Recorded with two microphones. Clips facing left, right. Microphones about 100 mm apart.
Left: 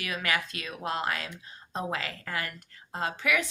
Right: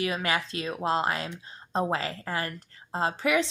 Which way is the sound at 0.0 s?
30° right (ahead or behind).